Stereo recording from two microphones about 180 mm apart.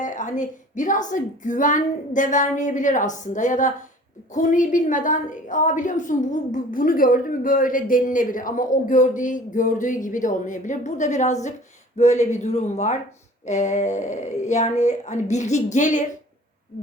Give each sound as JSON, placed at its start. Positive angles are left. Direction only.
{"t": 0.0, "sound": "a woman's voice", "side_deg": 45}